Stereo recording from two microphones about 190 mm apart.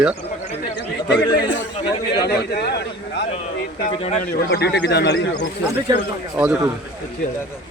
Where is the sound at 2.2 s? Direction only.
60° left (ahead or behind).